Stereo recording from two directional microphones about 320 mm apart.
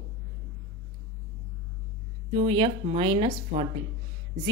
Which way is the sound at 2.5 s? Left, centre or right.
Centre.